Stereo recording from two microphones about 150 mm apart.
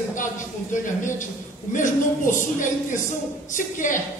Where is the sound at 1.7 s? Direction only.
60° left (ahead or behind).